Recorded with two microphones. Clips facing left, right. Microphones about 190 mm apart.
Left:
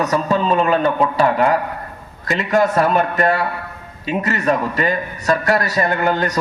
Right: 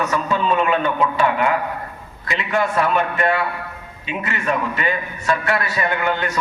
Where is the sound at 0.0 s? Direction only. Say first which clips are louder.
Left 3 dB; 35° left (ahead or behind).